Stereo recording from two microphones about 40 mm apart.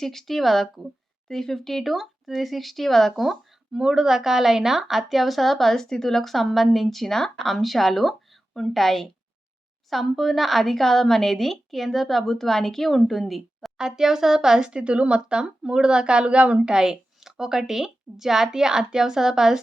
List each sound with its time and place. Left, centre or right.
0.0 s a woman's voice: centre
1.3 s a woman's voice: centre
3.7 s a woman's voice: centre
13.7 s a woman's voice: centre
16.6 s a woman's voice: centre